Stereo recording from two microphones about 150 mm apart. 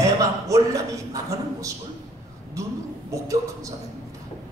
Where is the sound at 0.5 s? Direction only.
20° right (ahead or behind).